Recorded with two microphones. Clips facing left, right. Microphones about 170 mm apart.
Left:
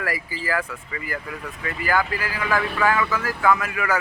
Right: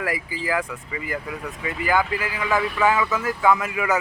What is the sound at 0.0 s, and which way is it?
Speech, 15° right (ahead or behind).